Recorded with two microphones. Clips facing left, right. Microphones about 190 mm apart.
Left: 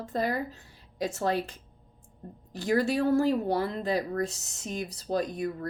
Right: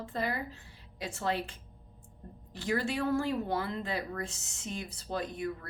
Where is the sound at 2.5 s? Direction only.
40° left (ahead or behind).